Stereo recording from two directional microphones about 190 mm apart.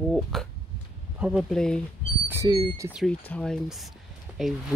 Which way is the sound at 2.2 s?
15° right (ahead or behind).